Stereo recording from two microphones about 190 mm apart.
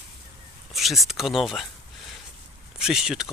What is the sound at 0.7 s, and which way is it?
Speech, centre (ahead or behind).